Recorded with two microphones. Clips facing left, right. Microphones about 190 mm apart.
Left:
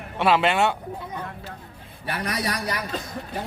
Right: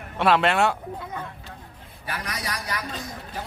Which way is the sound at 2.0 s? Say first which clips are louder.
Left 5 dB; 35° left (ahead or behind).